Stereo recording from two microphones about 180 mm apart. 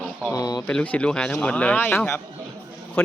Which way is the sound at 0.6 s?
5° left (ahead or behind).